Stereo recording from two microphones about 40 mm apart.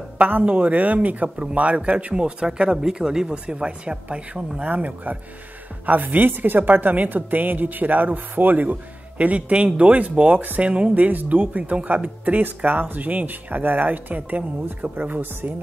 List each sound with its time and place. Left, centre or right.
0.2 s a man's voice: right; by 3.3 s centre
3.4 s speech: right
4.6 s a man's voice: right
9.2 s a man's voice: right
11.0 s speech: right
12.4 s speech: right